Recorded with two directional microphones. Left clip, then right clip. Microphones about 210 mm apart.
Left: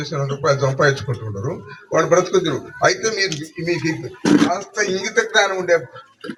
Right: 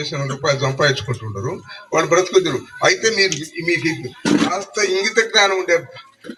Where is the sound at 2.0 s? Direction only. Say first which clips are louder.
Right 1 dB; 50° left (ahead or behind).